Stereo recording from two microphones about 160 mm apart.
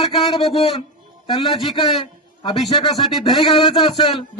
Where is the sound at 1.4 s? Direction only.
Centre (ahead or behind).